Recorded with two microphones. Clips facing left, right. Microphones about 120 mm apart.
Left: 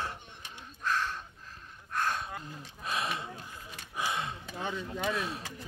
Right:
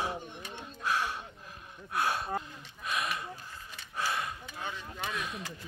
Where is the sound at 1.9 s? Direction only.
10° right (ahead or behind).